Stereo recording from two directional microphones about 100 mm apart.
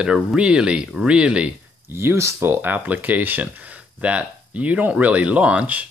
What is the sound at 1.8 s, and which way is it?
Speech, 25° right (ahead or behind).